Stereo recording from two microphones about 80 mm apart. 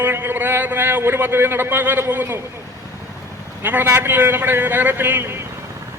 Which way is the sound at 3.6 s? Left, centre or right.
Right.